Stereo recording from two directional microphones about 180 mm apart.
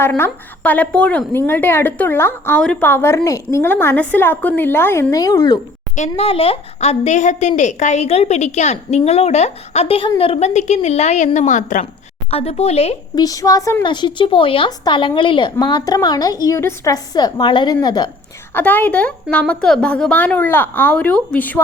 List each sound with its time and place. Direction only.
0.0 s speech: 10° left (ahead or behind)
6.0 s a woman's voice: 35° left (ahead or behind)
13.1 s a woman's voice: 20° left (ahead or behind)
18.5 s speech: 10° left (ahead or behind)